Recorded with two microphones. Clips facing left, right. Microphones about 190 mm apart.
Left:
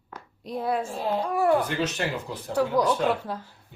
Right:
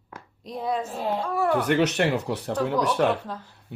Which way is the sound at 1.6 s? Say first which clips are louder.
Right 6 dB; 70° right (ahead or behind).